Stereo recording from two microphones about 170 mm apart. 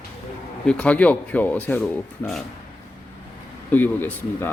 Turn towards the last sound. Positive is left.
turn(degrees=10)  # may be behind; listen again after turning